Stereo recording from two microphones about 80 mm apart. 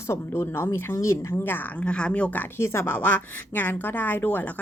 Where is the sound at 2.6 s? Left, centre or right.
Left.